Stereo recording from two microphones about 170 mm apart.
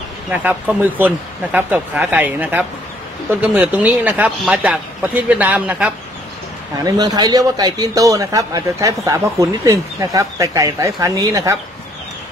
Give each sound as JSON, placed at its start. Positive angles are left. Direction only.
{"t": 0.3, "sound": "speech", "side_deg": -10}
{"t": 6.8, "sound": "a man's voice", "side_deg": -25}